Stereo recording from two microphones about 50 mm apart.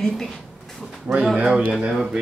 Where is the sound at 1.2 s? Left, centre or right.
Centre.